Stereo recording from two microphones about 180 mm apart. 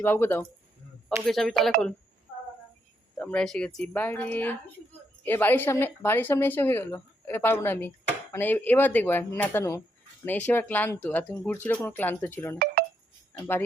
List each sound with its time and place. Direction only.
0.0 s speech: 10° left (ahead or behind)
1.2 s speech: centre (ahead or behind)
3.2 s speech: 5° left (ahead or behind)
12.8 s a sound: 60° right (ahead or behind)